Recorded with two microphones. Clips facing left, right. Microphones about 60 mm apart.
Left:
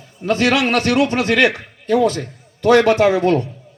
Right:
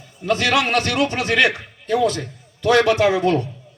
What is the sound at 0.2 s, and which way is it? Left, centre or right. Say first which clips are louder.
A man's voice: left 2 dB; left.